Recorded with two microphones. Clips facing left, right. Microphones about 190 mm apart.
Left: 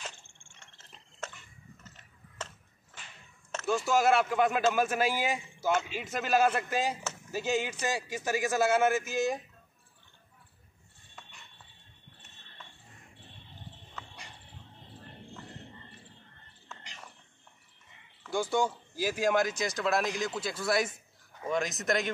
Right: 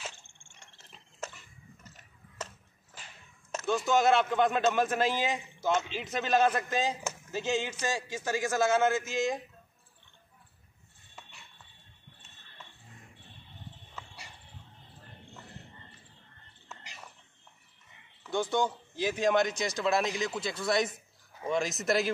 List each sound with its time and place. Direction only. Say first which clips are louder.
0.3 s biting: even; 15° right (ahead or behind)
3.6 s speech: even; 5° left (ahead or behind)
16.6 s a sound: even; 5° right (ahead or behind)
18.3 s speech: even; 10° left (ahead or behind)